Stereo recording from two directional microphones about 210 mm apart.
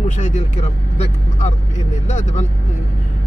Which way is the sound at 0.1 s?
35° left (ahead or behind).